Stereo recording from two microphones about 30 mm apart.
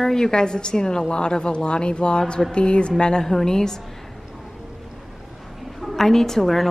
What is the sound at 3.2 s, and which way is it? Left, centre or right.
Speech, centre.